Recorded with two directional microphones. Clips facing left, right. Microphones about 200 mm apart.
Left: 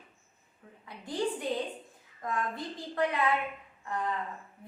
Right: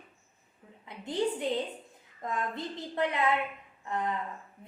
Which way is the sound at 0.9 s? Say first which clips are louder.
Right 2 dB; 20° right (ahead or behind).